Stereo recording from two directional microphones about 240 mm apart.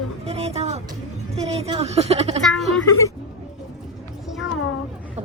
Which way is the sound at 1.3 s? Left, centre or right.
Right.